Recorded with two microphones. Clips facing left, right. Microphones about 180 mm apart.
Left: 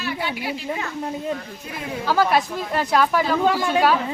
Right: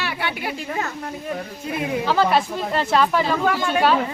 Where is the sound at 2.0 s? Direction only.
5° left (ahead or behind).